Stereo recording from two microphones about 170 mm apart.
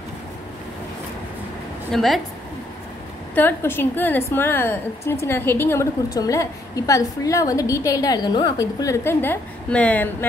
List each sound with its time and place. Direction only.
1.9 s a woman's voice: centre (ahead or behind)
3.3 s a woman's voice: 10° left (ahead or behind)